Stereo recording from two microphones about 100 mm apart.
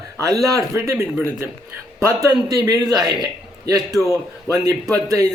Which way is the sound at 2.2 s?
35° right (ahead or behind).